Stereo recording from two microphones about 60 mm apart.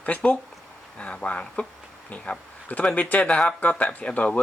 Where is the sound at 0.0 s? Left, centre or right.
Left.